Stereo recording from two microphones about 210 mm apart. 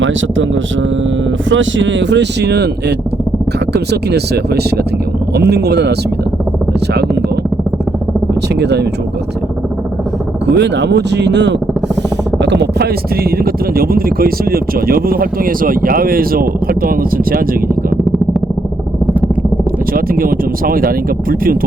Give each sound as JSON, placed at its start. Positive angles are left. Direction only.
{"t": 0.0, "sound": "speech", "side_deg": -65}
{"t": 3.7, "sound": "speech", "side_deg": -50}
{"t": 8.6, "sound": "speech", "side_deg": -55}
{"t": 10.4, "sound": "speech", "side_deg": -55}
{"t": 12.4, "sound": "a sound", "side_deg": -55}
{"t": 13.3, "sound": "speech", "side_deg": -45}
{"t": 19.9, "sound": "speech", "side_deg": -45}